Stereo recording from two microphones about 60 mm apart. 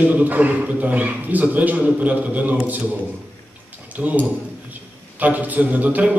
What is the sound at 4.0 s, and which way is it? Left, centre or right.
A man's voice, right.